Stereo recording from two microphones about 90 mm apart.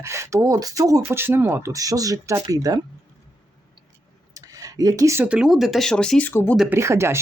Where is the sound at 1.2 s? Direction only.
25° right (ahead or behind).